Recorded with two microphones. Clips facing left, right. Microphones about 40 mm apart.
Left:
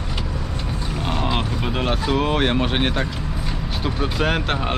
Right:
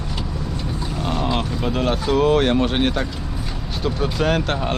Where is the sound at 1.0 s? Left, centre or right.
Centre.